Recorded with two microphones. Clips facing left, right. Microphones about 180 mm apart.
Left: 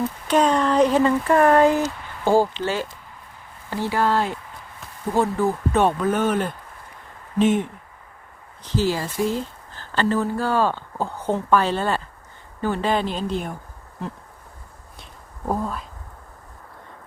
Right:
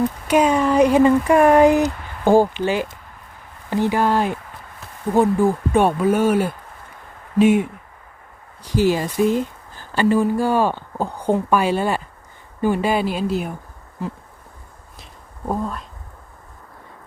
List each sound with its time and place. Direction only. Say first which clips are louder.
0.0 s speech: right 3 dB; 10° right (ahead or behind)
15.4 s speech: right 1 dB; centre (ahead or behind)